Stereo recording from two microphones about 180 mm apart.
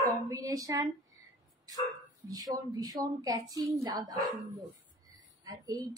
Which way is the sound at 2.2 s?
20° right (ahead or behind).